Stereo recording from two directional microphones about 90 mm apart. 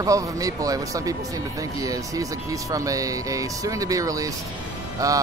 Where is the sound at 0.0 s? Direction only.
40° right (ahead or behind).